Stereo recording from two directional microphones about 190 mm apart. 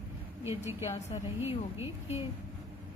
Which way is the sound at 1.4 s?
15° right (ahead or behind).